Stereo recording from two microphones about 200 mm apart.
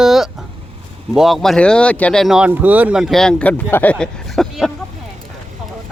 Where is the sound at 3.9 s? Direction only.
Centre (ahead or behind).